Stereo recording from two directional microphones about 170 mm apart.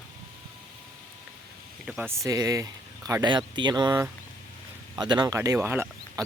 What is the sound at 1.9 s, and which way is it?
Speech, 5° right (ahead or behind).